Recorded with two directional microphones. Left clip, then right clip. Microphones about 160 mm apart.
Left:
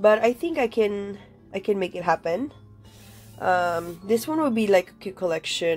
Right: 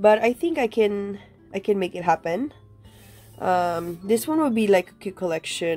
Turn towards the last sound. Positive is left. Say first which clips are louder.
# left 1 dB
turn(degrees=-25)  # may be behind; listen again after turning